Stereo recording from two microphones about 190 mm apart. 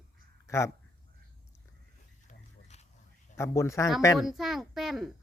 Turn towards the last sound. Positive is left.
turn(degrees=0)  # may be behind; listen again after turning